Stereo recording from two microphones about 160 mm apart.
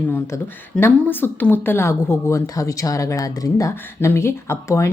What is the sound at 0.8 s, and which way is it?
A woman's voice, 10° left (ahead or behind).